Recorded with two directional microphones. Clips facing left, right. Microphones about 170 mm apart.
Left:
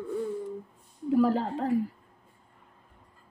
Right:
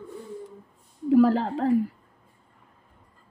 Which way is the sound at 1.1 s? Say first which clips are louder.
Right 5 dB; 90° right.